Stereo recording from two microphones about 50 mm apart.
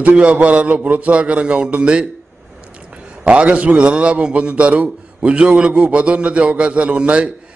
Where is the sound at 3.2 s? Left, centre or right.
Right.